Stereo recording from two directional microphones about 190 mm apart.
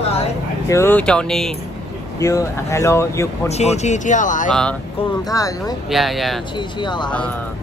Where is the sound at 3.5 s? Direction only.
35° left (ahead or behind).